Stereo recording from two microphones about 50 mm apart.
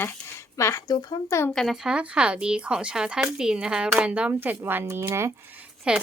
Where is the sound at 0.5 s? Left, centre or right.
Left.